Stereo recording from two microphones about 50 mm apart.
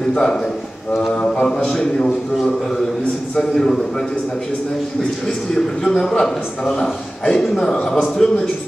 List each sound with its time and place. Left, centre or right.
0.1 s a man's voice: centre
3.3 s a man's voice: centre
5.5 s a man's voice: centre